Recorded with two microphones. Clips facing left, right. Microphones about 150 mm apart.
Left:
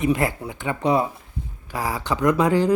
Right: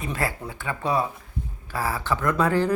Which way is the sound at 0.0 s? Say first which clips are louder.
Left 7 dB; 20° left (ahead or behind).